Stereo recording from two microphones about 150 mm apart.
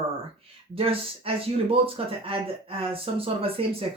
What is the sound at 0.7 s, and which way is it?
Speech, 40° right (ahead or behind).